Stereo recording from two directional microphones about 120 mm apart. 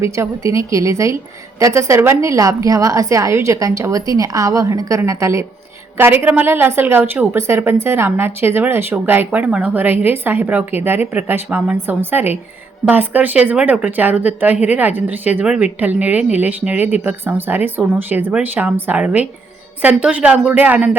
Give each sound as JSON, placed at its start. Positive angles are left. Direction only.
{"t": 0.0, "sound": "a woman's voice", "side_deg": -25}